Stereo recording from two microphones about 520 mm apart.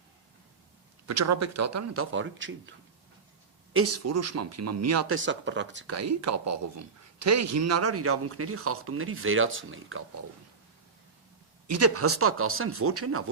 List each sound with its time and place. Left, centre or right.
1.0 s speech: right
11.7 s speech: right